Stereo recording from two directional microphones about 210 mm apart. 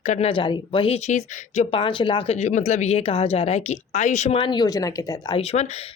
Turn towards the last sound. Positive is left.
turn(degrees=30)  # may be behind; listen again after turning